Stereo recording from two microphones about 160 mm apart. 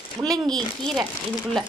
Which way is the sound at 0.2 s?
25° right (ahead or behind).